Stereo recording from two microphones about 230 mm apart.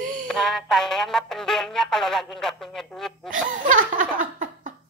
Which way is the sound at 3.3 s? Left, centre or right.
Right.